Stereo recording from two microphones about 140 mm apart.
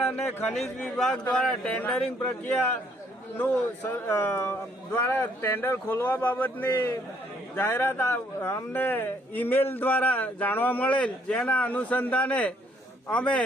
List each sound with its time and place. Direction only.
0.5 s a man's voice: 5° left (ahead or behind)